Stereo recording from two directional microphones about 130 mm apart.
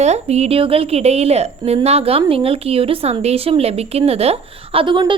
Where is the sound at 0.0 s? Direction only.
60° right (ahead or behind).